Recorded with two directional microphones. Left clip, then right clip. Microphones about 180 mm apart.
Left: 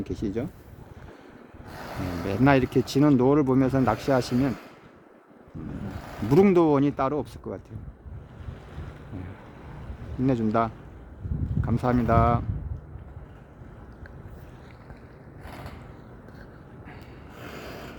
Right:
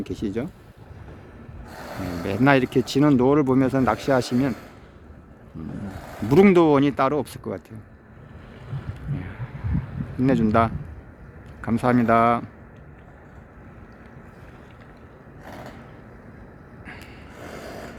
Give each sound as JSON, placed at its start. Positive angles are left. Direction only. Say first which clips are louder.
{"t": 0.0, "sound": "speech", "louder": "right 2 dB", "side_deg": 0}
{"t": 1.7, "sound": "ratchet", "louder": "right 2 dB", "side_deg": -65}
{"t": 2.2, "sound": "speech", "louder": "right 3 dB", "side_deg": 5}
{"t": 6.2, "sound": "speech", "louder": "right 4 dB", "side_deg": 0}
{"t": 10.2, "sound": "speech", "louder": "right 5 dB", "side_deg": -5}
{"t": 15.4, "sound": "a sound", "louder": "right 3 dB", "side_deg": -60}
{"t": 17.3, "sound": "a sound", "louder": "right 3 dB", "side_deg": -60}